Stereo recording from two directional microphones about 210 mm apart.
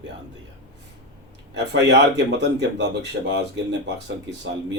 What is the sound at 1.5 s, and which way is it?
Speech, 55° right (ahead or behind).